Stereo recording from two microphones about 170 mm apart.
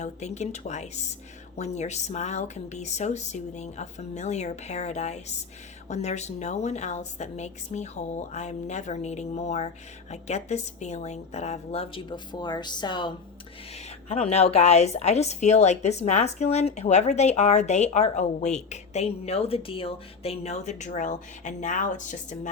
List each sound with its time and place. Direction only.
0.0 s speech: 40° left (ahead or behind); by 13.1 s 25° left (ahead or behind)
13.7 s speech: 40° left (ahead or behind)